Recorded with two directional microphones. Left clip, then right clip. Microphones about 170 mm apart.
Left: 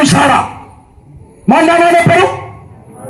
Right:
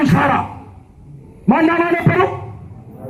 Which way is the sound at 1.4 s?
40° left (ahead or behind).